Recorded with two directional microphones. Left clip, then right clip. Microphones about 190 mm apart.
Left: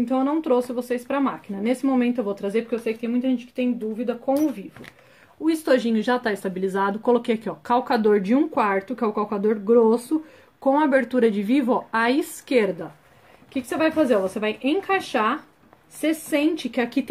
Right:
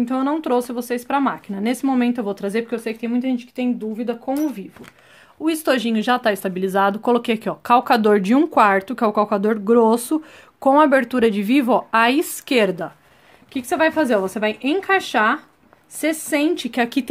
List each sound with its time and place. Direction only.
0.0 s a woman's voice: 55° right (ahead or behind)
5.4 s a woman's voice: 40° right (ahead or behind)